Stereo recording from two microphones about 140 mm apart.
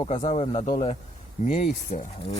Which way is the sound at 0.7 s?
35° left (ahead or behind).